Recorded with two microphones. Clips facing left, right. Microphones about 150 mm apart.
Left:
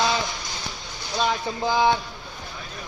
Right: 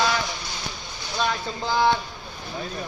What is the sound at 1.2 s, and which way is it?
Speech, 15° left (ahead or behind).